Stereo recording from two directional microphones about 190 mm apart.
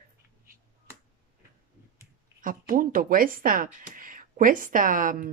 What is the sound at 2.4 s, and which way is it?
Speech, 45° right (ahead or behind).